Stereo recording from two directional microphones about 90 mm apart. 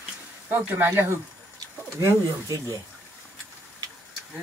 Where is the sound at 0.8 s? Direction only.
25° right (ahead or behind).